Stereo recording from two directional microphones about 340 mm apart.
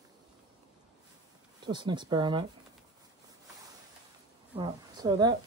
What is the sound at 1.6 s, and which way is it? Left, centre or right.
Speech, centre.